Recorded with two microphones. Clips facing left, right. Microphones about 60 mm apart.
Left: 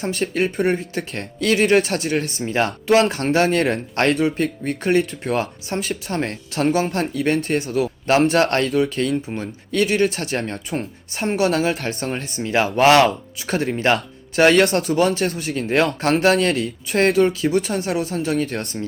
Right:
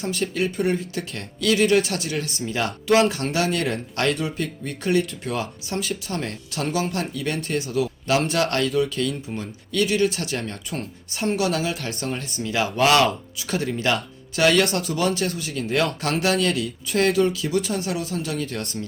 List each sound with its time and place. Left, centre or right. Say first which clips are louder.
0.0 s speech: left 3 dB; left